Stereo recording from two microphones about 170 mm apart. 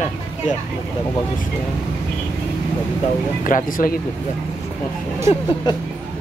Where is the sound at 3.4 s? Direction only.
50° left (ahead or behind).